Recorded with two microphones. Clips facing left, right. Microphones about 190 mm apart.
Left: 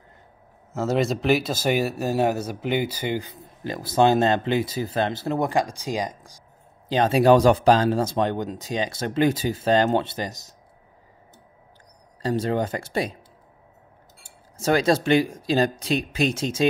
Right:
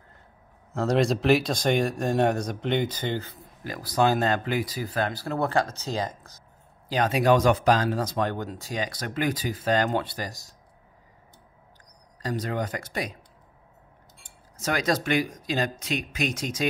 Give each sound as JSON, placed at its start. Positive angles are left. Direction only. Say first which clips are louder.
{"t": 0.7, "sound": "speech", "louder": "even", "side_deg": 0}
{"t": 3.6, "sound": "speech", "louder": "left 4 dB", "side_deg": 25}
{"t": 6.9, "sound": "speech", "louder": "left 5 dB", "side_deg": 30}
{"t": 12.2, "sound": "speech", "louder": "left 6 dB", "side_deg": 30}
{"t": 14.6, "sound": "speech", "louder": "left 6 dB", "side_deg": 30}